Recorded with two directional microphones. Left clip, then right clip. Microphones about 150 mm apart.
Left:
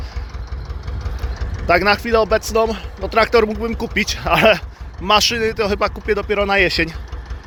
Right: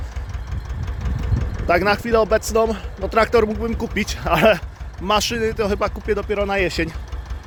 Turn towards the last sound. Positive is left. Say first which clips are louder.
# left 5 dB
turn(degrees=-10)  # may be behind; listen again after turning